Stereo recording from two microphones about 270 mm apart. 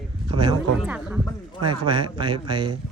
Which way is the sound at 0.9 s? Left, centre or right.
Centre.